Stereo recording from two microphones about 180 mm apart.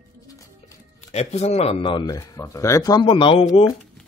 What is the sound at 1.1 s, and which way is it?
Speech, 35° left (ahead or behind).